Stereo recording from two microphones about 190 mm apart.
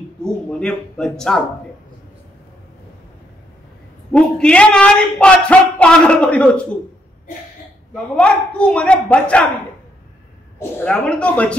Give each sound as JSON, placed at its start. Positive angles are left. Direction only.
{"t": 0.2, "sound": "speech", "side_deg": 5}
{"t": 4.1, "sound": "speech", "side_deg": 5}
{"t": 7.9, "sound": "speech", "side_deg": 5}
{"t": 10.6, "sound": "speech", "side_deg": 10}